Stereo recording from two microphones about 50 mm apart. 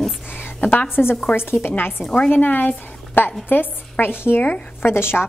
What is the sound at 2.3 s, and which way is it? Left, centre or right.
A woman's voice, left.